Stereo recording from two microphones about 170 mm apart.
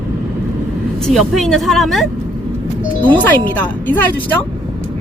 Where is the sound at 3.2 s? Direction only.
10° left (ahead or behind).